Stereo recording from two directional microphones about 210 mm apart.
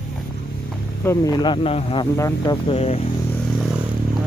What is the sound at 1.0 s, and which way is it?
Speech, 15° left (ahead or behind).